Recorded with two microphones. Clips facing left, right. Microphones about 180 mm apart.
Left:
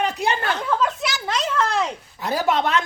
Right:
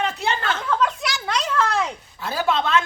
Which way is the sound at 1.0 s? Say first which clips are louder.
Left 1 dB; centre (ahead or behind).